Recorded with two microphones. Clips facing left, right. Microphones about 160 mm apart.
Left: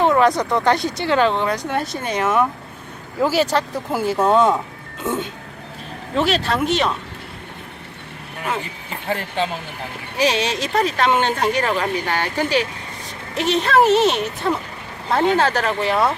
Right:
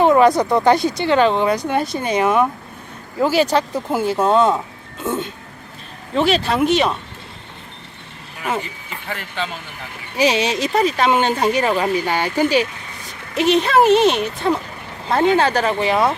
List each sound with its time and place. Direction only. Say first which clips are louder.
0.2 s speech: right 3 dB; 5° right (ahead or behind)
6.1 s speech: right 3 dB; centre (ahead or behind)
9.0 s speech: left 5 dB; 45° left (ahead or behind)
10.2 s speech: right 2 dB; 5° right (ahead or behind)